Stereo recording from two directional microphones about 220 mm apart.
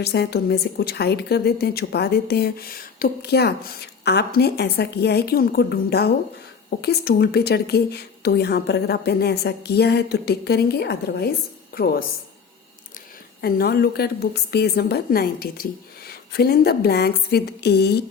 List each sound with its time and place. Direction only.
0.0 s a woman's voice: 50° left (ahead or behind)
13.4 s a woman's voice: 45° left (ahead or behind)